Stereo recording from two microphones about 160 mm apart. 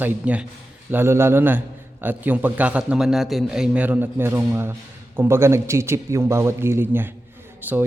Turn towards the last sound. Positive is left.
turn(degrees=-10)  # may be behind; listen again after turning